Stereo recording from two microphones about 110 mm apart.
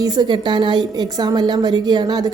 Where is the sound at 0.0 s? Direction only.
40° right (ahead or behind).